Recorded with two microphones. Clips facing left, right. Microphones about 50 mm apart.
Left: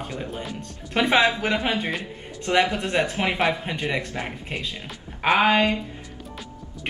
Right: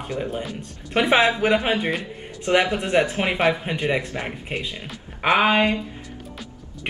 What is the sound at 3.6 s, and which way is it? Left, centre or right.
Speech, centre.